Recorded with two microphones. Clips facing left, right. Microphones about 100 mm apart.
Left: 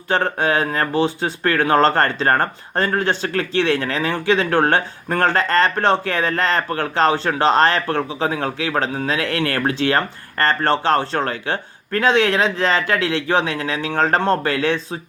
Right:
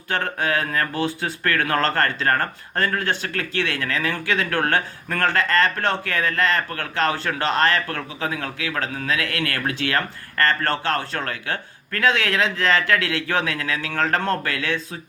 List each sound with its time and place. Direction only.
0.1 s speech: 30° left (ahead or behind)